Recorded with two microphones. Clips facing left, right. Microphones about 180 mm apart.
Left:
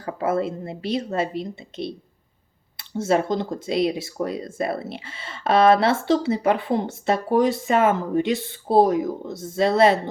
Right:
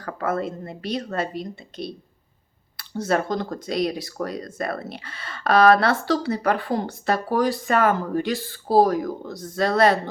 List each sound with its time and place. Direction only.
0.0 s speech: 25° left (ahead or behind)